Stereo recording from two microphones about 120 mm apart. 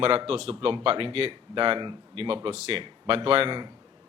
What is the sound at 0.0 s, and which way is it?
Speech, 50° right (ahead or behind).